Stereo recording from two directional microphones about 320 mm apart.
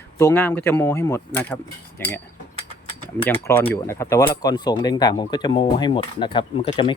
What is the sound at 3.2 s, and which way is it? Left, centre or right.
Speech, centre.